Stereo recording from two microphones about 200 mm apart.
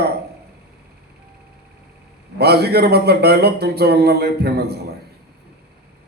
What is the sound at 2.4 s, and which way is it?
A man's voice, 55° right (ahead or behind).